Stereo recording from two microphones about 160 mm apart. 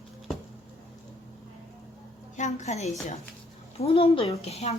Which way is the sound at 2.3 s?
50° left (ahead or behind).